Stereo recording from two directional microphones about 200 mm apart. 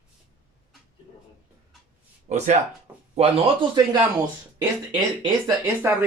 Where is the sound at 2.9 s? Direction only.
10° right (ahead or behind).